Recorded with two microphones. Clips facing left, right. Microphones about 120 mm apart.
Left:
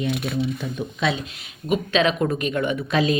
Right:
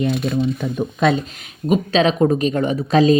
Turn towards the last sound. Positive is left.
turn(degrees=-35)  # may be behind; listen again after turning